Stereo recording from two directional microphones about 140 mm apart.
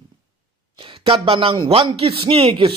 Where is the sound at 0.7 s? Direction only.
40° right (ahead or behind).